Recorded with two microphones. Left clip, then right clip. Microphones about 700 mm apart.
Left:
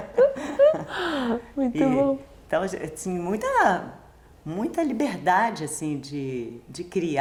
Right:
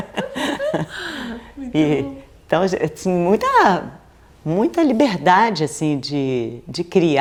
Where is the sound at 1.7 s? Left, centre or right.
Right.